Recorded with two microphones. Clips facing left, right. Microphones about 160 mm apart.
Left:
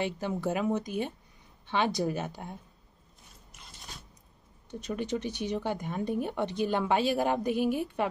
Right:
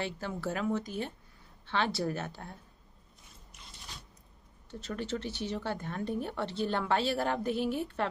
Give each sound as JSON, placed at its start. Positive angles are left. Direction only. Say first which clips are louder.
{"t": 0.0, "sound": "a woman's voice", "louder": "left 5 dB", "side_deg": 15}
{"t": 4.6, "sound": "a woman's voice", "louder": "left 3 dB", "side_deg": 15}